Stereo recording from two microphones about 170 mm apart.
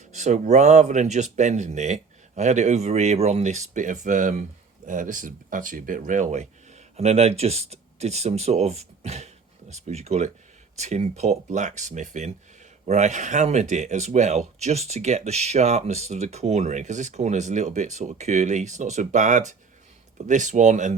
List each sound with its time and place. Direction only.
0.1 s speech: 45° right (ahead or behind)